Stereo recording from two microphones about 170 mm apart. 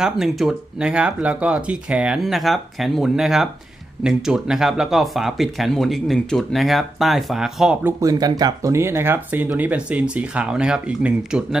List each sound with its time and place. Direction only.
0.0 s speech: 5° right (ahead or behind)
8.0 s speech: 20° right (ahead or behind); by 11.4 s 5° right (ahead or behind)